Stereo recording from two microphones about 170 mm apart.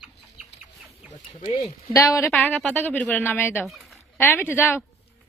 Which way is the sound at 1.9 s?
20° left (ahead or behind).